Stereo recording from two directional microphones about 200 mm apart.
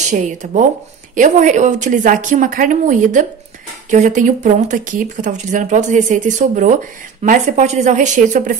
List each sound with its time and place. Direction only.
0.1 s speech: 35° right (ahead or behind)